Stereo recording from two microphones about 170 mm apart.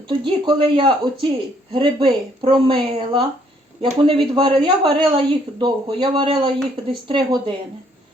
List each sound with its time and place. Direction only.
0.1 s a woman's voice: 30° right (ahead or behind)